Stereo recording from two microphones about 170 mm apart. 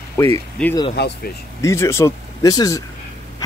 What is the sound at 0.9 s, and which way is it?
Speech, 80° left.